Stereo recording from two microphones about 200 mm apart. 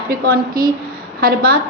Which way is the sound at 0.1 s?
45° right (ahead or behind).